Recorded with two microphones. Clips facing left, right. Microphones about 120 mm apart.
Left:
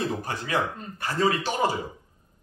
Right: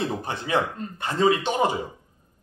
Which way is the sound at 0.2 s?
20° right (ahead or behind).